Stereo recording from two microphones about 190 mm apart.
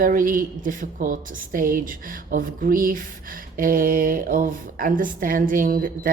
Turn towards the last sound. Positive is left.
turn(degrees=-50)  # may be behind; listen again after turning